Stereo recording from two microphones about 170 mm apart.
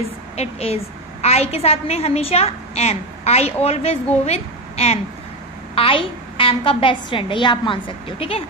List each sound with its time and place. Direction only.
0.4 s a woman's voice: 35° left (ahead or behind)